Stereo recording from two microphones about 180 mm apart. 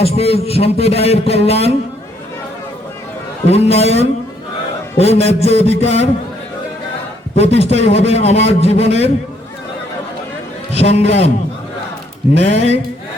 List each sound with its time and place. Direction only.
0.0 s a man's voice: 35° left (ahead or behind)
3.4 s a man's voice: 35° left (ahead or behind)
7.3 s a man's voice: 35° left (ahead or behind)
10.7 s a man's voice: 35° left (ahead or behind)
12.4 s a man's voice: 35° left (ahead or behind)